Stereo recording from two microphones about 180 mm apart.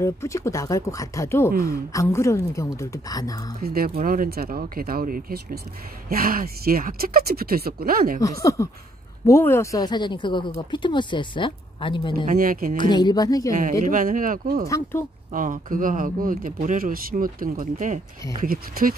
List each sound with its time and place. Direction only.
0.0 s a woman's voice: 15° left (ahead or behind)
1.5 s speech: 55° right (ahead or behind)
1.9 s a woman's voice: 15° left (ahead or behind)
3.6 s speech: 55° right (ahead or behind)
8.2 s a woman's voice: 20° left (ahead or behind)
12.3 s speech: 50° right (ahead or behind)
12.7 s speech: 25° left (ahead or behind)
13.6 s speech: 45° right (ahead or behind)
14.7 s a woman's voice: 15° left (ahead or behind)
15.3 s speech: 50° right (ahead or behind)